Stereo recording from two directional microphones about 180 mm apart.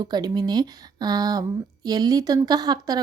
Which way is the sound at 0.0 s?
20° right (ahead or behind).